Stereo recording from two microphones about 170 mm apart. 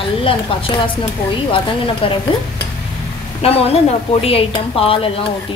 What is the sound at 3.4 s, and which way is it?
A woman's voice, 35° left (ahead or behind).